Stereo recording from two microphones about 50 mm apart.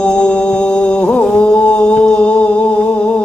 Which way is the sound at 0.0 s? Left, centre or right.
Centre.